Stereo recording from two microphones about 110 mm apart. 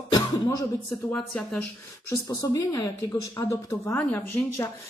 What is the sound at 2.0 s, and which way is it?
Speech, 30° left (ahead or behind).